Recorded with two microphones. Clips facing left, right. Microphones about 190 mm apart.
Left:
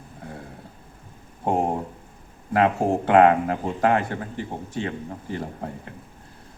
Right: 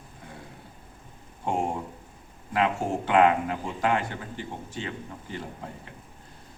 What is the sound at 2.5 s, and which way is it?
Speech, 55° left (ahead or behind).